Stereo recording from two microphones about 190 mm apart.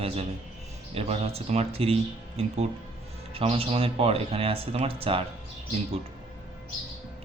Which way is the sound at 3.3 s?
30° right (ahead or behind).